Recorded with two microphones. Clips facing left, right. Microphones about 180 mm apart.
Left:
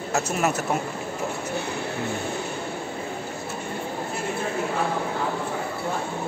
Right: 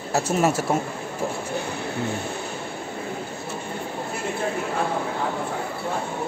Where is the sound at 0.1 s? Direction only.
30° right (ahead or behind).